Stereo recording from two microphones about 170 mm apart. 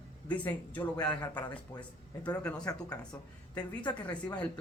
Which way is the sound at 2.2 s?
5° left (ahead or behind).